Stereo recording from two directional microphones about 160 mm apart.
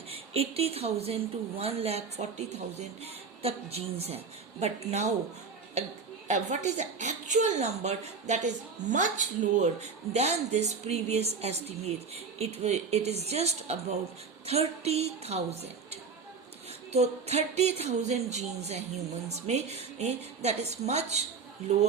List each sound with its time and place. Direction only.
0.1 s a woman's voice: 40° right (ahead or behind)
6.2 s a woman's voice: 50° right (ahead or behind)